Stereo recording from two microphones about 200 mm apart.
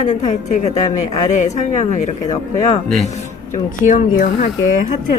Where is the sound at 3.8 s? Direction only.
40° left (ahead or behind).